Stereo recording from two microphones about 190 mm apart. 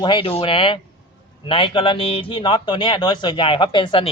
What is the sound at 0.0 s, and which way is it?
Speech, 25° left (ahead or behind).